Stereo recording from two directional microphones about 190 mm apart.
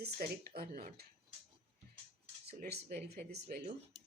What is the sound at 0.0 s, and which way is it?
Speech, 55° right (ahead or behind).